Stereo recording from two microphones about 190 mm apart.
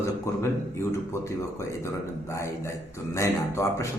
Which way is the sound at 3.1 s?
15° left (ahead or behind).